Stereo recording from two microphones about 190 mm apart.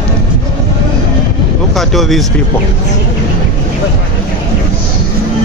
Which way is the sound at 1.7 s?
Centre (ahead or behind).